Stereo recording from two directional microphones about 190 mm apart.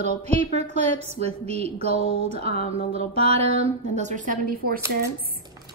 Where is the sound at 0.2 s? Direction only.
35° right (ahead or behind).